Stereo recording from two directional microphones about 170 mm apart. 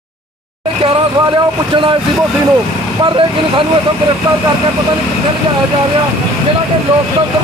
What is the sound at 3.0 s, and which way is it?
Speech, 30° right (ahead or behind).